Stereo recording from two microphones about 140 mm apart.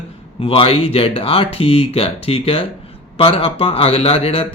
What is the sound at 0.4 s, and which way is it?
Speech, 40° left (ahead or behind).